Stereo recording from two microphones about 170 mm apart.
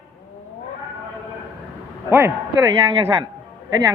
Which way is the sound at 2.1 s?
15° right (ahead or behind).